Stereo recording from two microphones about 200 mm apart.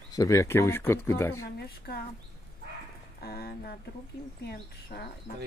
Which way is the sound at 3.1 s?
50° left (ahead or behind).